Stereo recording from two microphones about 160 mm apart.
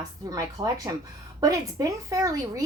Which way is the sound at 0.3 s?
20° right (ahead or behind).